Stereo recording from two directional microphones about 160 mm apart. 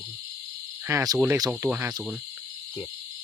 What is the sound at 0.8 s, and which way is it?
Cricket, 20° right (ahead or behind).